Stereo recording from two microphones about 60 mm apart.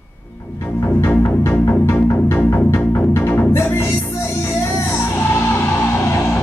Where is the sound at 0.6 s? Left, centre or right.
Left.